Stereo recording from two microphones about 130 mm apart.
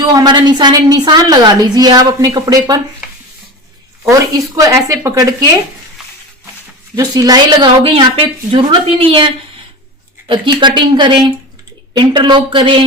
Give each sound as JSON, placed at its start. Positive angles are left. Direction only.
{"t": 0.0, "sound": "a woman's voice", "side_deg": -30}
{"t": 4.4, "sound": "speech", "side_deg": -25}
{"t": 6.9, "sound": "a woman's voice", "side_deg": -30}